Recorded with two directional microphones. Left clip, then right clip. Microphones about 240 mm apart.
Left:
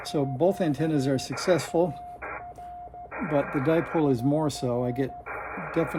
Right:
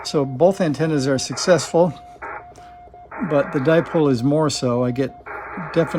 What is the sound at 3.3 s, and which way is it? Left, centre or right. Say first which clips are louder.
Speech: right 7 dB; right.